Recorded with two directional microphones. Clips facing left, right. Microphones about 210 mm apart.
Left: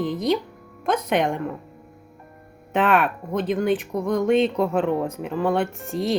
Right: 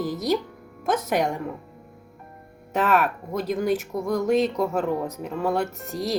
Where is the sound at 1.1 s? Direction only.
5° right (ahead or behind).